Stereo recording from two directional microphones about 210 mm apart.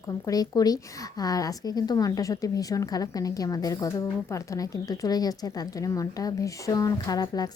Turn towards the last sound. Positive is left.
turn(degrees=20)  # may be behind; listen again after turning